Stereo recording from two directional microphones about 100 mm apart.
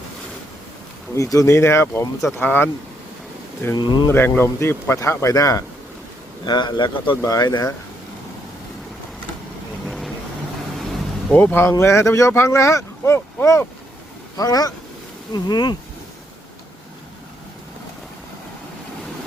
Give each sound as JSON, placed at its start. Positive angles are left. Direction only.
{"t": 1.1, "sound": "speech", "side_deg": 35}
{"t": 3.8, "sound": "a man's voice", "side_deg": 45}
{"t": 4.1, "sound": "speech", "side_deg": 20}
{"t": 6.4, "sound": "a man's voice", "side_deg": 50}
{"t": 7.2, "sound": "speech", "side_deg": 35}
{"t": 9.8, "sound": "vehicle", "side_deg": 0}
{"t": 11.3, "sound": "speech", "side_deg": 20}
{"t": 14.3, "sound": "a man's voice", "side_deg": 40}